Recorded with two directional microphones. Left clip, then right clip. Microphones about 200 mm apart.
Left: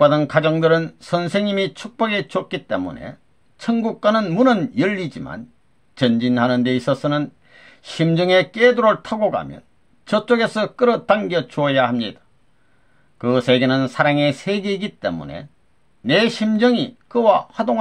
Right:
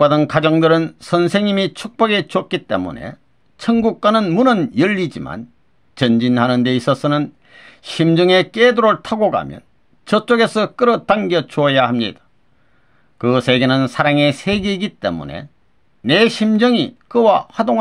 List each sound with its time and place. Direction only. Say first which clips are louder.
0.0 s speech: right 2 dB; 35° right (ahead or behind)
13.2 s speech: right 2 dB; 35° right (ahead or behind)